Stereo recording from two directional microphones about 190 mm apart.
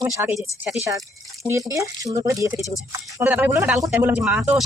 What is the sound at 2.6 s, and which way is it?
Speech, 15° left (ahead or behind).